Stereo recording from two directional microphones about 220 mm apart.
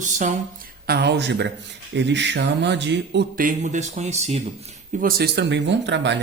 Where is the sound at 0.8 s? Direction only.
45° right (ahead or behind); by 4.4 s 30° right (ahead or behind).